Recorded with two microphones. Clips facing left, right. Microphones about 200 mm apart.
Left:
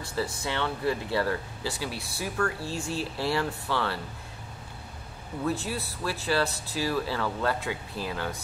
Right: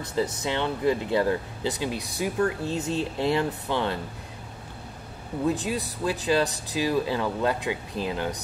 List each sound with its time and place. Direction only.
0.0 s speech: 20° right (ahead or behind)
5.4 s speech: 15° right (ahead or behind)